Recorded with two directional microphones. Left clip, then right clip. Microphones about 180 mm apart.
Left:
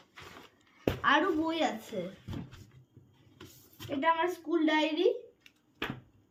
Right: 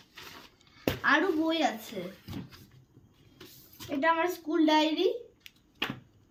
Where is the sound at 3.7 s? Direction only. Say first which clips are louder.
Right 2 dB; 15° left (ahead or behind).